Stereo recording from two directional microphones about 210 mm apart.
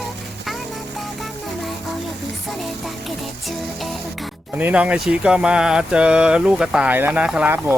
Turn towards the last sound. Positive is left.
turn(degrees=-5)  # may be behind; listen again after turning